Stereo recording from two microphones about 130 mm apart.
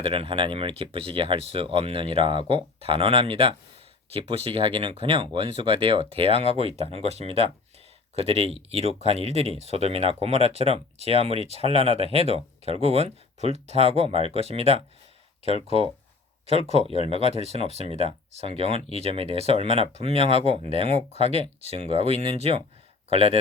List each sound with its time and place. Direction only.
0.0 s speech: 45° right (ahead or behind)